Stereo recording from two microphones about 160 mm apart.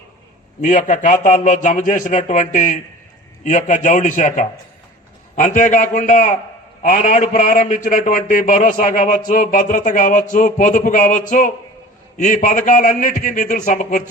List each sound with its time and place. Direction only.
0.6 s a man's voice: 50° left (ahead or behind)